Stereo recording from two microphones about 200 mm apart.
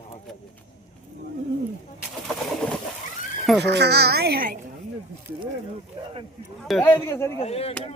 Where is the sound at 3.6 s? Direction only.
55° right (ahead or behind).